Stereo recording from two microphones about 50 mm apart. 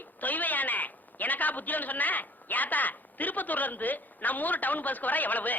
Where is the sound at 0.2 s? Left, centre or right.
Left.